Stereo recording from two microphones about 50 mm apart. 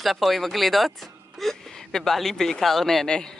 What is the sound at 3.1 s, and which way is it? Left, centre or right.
Speech, centre.